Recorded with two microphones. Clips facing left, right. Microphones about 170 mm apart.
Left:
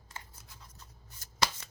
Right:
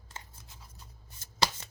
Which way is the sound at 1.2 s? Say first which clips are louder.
Right 1 dB; 30° right (ahead or behind).